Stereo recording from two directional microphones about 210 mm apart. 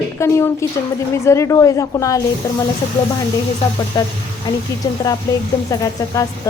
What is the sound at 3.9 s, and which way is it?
A woman's voice, 20° left (ahead or behind).